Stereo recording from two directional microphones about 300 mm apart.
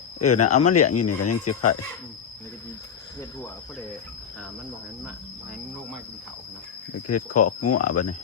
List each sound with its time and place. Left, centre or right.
0.3 s speech: left
7.1 s speech: left